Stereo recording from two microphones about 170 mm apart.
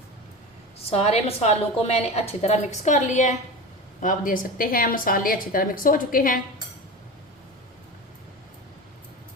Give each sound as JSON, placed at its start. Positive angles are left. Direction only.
{"t": 0.9, "sound": "a woman's voice", "side_deg": 35}